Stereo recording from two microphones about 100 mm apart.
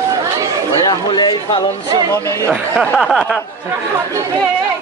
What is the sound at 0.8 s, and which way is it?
Speech, 45° left (ahead or behind).